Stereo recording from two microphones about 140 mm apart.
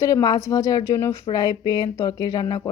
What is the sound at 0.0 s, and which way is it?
A woman's voice, 25° left (ahead or behind).